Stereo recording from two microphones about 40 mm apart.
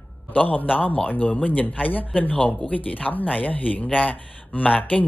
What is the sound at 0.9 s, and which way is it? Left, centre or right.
Speech, left.